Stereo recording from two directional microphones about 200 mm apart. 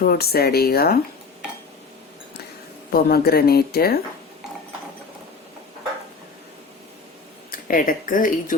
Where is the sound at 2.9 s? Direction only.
50° left (ahead or behind).